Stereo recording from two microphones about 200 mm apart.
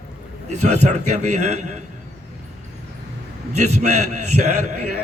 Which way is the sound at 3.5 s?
35° right (ahead or behind).